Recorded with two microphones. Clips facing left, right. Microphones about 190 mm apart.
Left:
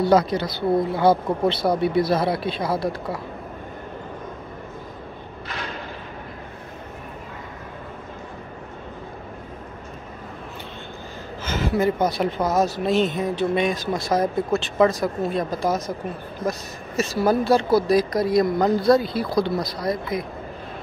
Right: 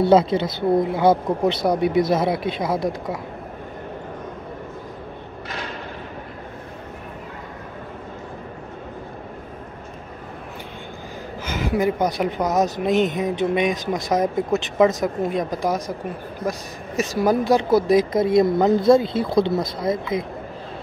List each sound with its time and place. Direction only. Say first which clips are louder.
0.1 s speech: right 3 dB; 25° right (ahead or behind)
11.4 s a woman's voice: even; 15° right (ahead or behind)